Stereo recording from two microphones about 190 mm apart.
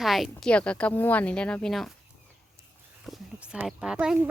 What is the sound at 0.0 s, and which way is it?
Speech, centre (ahead or behind).